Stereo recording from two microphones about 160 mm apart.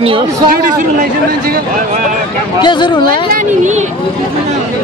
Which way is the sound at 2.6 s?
30° left (ahead or behind).